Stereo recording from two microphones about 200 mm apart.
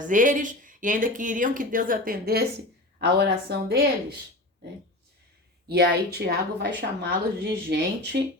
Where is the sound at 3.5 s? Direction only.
55° right (ahead or behind).